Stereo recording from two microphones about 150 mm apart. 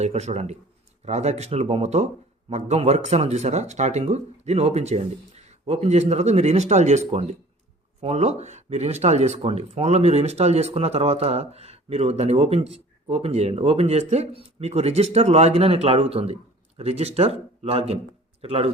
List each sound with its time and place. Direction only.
0.0 s speech: 45° right (ahead or behind)